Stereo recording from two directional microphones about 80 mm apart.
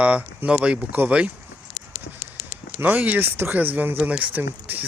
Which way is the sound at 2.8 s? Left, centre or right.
Right.